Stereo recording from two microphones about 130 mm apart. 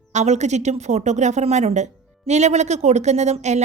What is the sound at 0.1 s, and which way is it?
Speech, 60° right (ahead or behind).